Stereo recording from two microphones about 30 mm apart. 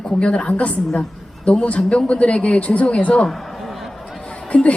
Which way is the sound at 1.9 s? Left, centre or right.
Left.